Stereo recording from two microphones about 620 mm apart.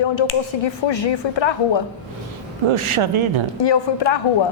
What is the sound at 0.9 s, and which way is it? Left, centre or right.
Speech, left.